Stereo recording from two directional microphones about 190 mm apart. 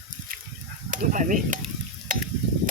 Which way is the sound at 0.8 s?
45° right (ahead or behind).